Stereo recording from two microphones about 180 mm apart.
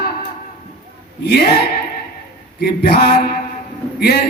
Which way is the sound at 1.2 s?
60° left (ahead or behind).